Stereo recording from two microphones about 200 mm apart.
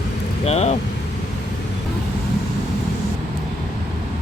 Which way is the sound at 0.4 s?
35° left (ahead or behind).